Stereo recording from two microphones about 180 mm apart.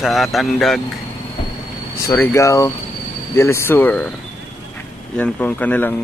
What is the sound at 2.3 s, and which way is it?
Speech, 15° left (ahead or behind).